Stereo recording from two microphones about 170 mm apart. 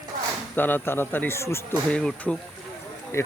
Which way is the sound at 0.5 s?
10° left (ahead or behind).